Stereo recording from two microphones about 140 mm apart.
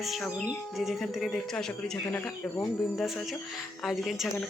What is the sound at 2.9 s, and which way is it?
Speech, 5° left (ahead or behind).